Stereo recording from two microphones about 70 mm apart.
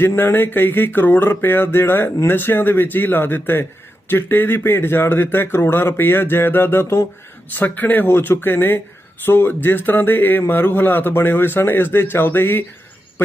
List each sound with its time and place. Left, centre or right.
0.2 s a man's voice: left